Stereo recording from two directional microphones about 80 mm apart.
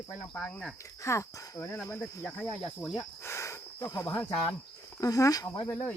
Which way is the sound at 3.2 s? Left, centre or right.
Left.